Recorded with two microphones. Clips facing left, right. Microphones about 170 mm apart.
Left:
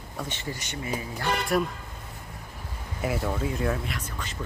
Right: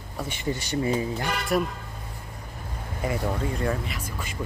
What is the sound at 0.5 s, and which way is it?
Speech, 30° right (ahead or behind).